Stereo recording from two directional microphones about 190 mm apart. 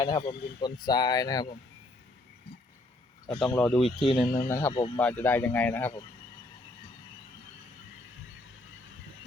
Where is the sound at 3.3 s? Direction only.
5° left (ahead or behind).